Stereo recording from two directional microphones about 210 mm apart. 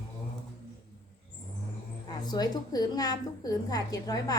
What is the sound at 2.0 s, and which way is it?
A woman's voice, 20° left (ahead or behind).